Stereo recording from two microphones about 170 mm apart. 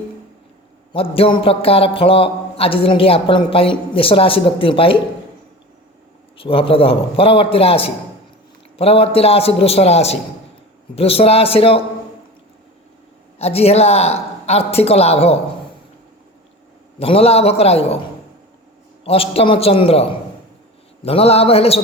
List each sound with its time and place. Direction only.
0.9 s a man's voice: 35° left (ahead or behind)
6.3 s a man's voice: 30° left (ahead or behind)
13.4 s a man's voice: 35° left (ahead or behind)
17.0 s a man's voice: 35° left (ahead or behind)
19.0 s a man's voice: 35° left (ahead or behind)